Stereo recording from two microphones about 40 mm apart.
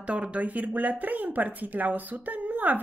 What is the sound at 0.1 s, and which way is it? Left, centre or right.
A woman's voice, right.